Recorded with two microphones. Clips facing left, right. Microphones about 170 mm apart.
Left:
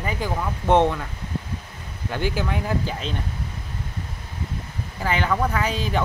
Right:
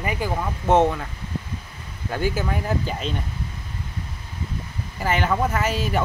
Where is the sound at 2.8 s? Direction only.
Centre (ahead or behind).